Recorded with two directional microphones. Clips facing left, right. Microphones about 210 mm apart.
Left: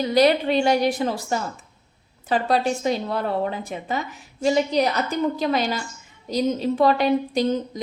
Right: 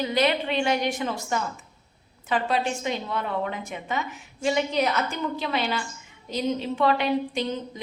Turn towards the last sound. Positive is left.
turn(degrees=40)  # may be behind; listen again after turning